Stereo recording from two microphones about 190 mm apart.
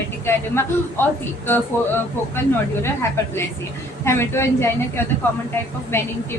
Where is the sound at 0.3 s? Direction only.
15° left (ahead or behind).